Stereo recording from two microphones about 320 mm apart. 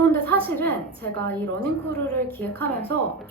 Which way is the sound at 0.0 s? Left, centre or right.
Centre.